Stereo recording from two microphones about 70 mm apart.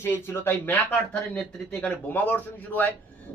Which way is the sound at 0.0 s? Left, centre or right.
Left.